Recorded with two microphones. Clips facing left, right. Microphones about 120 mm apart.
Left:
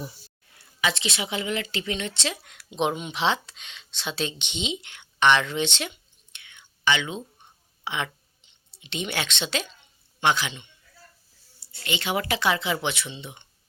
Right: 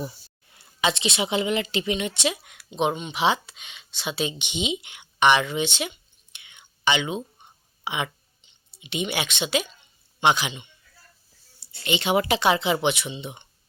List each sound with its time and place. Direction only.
0.5 s a woman's voice: 25° right (ahead or behind)
11.6 s a woman's voice: 20° right (ahead or behind)